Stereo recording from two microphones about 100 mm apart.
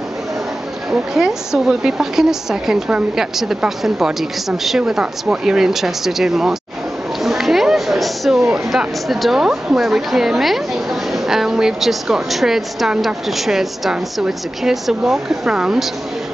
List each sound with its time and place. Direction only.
1.1 s speech: 5° right (ahead or behind)